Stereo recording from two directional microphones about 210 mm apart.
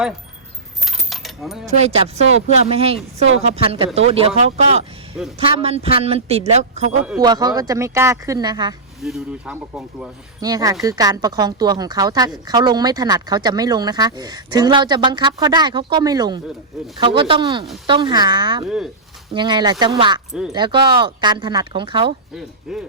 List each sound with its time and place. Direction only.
0.9 s keys jangling: centre (ahead or behind)
1.7 s speech: 30° right (ahead or behind)
7.2 s speech: 20° right (ahead or behind)
9.0 s speech: centre (ahead or behind)
10.4 s speech: 15° right (ahead or behind)
22.7 s speech: centre (ahead or behind)